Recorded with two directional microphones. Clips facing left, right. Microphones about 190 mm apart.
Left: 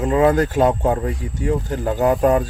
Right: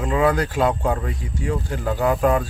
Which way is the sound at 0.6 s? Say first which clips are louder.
Left 2 dB; 20° left (ahead or behind).